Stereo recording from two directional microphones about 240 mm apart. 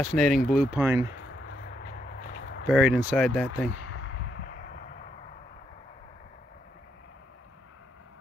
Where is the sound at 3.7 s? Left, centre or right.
Left.